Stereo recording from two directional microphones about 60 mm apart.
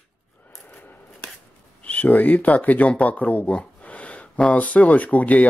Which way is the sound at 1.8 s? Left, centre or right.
Left.